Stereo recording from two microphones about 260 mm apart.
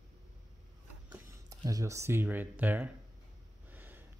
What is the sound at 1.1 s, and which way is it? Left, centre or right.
Speech, centre.